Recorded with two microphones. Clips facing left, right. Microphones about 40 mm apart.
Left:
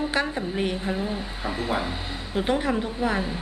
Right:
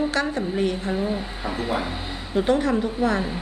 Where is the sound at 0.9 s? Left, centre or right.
Centre.